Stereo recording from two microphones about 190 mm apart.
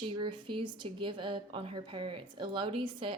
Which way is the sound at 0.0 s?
25° right (ahead or behind).